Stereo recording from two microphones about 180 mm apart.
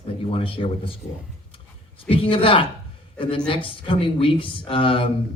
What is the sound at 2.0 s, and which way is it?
Speech, 30° left (ahead or behind).